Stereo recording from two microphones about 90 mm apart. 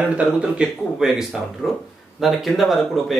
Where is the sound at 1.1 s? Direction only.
5° right (ahead or behind).